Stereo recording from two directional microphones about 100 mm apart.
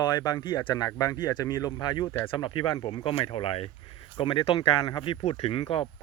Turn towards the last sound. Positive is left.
turn(degrees=65)  # may be behind; listen again after turning